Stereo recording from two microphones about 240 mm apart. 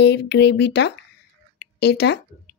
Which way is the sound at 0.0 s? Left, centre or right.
Left.